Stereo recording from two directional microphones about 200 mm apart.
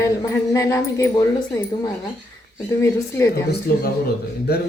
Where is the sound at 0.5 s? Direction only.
15° left (ahead or behind).